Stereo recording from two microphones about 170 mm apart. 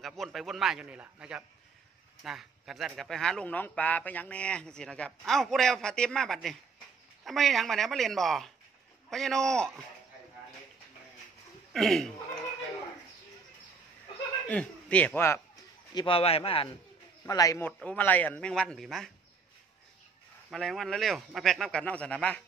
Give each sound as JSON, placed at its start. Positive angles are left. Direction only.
{"t": 0.2, "sound": "a man's voice", "side_deg": 0}
{"t": 11.7, "sound": "a man's voice", "side_deg": 0}
{"t": 14.5, "sound": "speech", "side_deg": 10}
{"t": 15.9, "sound": "a man's voice", "side_deg": 30}
{"t": 17.3, "sound": "a man's voice", "side_deg": 20}
{"t": 20.4, "sound": "a man's voice", "side_deg": 0}